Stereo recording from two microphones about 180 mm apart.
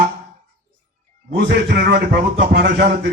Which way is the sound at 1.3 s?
65° right (ahead or behind).